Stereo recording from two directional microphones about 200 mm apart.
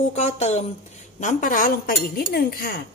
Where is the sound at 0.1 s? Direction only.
35° left (ahead or behind).